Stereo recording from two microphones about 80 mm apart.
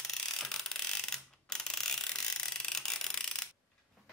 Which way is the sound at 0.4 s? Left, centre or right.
Centre.